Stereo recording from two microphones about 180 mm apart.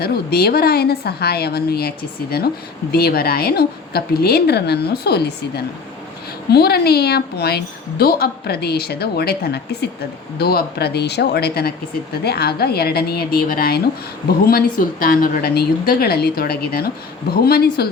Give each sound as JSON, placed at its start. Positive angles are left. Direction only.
{"t": 0.0, "sound": "a woman's voice", "side_deg": 60}
{"t": 2.9, "sound": "a woman's voice", "side_deg": 60}